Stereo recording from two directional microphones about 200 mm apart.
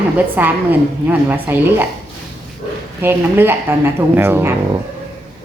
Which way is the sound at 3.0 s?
10° right (ahead or behind).